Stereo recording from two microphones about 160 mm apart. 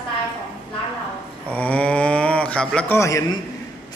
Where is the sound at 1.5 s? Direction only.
10° left (ahead or behind).